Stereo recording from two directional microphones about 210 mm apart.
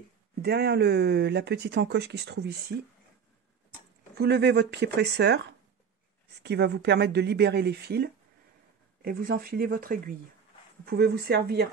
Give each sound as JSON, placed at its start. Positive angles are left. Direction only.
{"t": 0.4, "sound": "speech", "side_deg": -50}
{"t": 4.2, "sound": "speech", "side_deg": -50}